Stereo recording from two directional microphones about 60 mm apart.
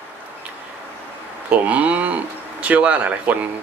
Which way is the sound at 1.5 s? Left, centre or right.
Right.